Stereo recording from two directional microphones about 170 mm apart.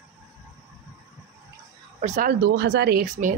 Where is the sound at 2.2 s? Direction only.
75° right (ahead or behind).